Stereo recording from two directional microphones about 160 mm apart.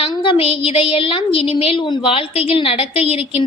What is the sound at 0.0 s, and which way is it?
A woman's voice, 35° left (ahead or behind).